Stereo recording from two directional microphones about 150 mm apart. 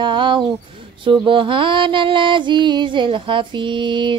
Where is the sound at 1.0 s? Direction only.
35° right (ahead or behind).